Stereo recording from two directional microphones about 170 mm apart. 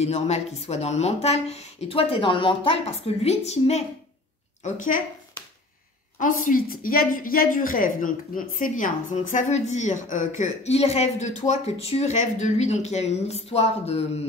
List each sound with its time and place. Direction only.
0.0 s speech: 40° left (ahead or behind)
4.7 s a woman's voice: 50° left (ahead or behind)
6.1 s a woman's voice: 55° left (ahead or behind); by 14.2 s 40° left (ahead or behind)